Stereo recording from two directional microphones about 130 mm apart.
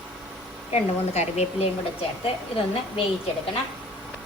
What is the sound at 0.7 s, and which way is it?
Speech, 60° left (ahead or behind).